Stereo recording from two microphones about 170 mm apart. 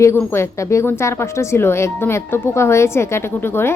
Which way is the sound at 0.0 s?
15° left (ahead or behind).